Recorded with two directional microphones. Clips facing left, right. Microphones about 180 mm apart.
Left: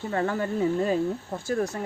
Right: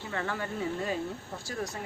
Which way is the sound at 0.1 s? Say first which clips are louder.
Left 7 dB; 40° left (ahead or behind).